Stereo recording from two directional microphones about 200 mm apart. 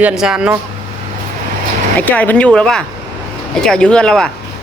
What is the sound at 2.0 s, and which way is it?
Speech, 10° left (ahead or behind).